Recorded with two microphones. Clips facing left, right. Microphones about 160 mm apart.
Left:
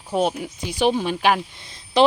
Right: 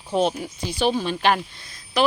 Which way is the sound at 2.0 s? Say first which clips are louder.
Left 4 dB; 30° left (ahead or behind).